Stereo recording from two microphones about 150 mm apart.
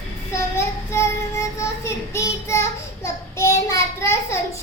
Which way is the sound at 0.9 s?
20° left (ahead or behind).